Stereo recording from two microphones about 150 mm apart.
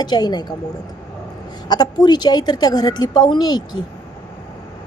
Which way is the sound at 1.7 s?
30° left (ahead or behind).